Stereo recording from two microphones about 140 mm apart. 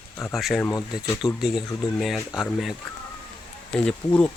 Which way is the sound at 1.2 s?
20° left (ahead or behind).